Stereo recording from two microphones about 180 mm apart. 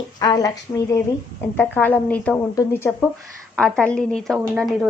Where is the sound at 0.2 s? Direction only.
20° left (ahead or behind).